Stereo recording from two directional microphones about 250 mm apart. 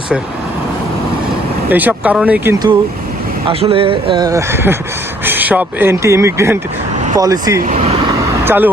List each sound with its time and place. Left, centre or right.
1.7 s speech: centre
7.6 s speech: right
8.2 s vehicle: centre